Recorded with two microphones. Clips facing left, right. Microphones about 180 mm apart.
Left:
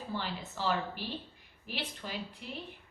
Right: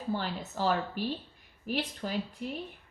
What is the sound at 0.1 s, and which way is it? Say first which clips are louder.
A woman's voice: right 6 dB; 45° right (ahead or behind).